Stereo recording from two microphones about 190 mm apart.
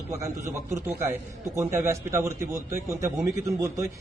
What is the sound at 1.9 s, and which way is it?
A man's voice, 15° right (ahead or behind).